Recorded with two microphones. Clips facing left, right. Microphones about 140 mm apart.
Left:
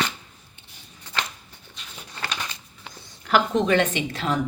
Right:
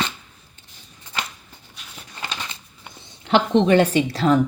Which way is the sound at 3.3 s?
30° right (ahead or behind).